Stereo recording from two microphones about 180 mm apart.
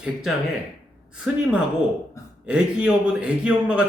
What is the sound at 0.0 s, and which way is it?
Speech, centre (ahead or behind).